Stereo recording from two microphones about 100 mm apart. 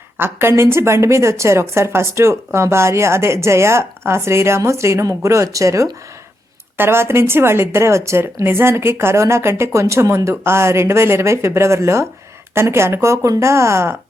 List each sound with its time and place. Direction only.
0.2 s a woman's voice: 25° right (ahead or behind)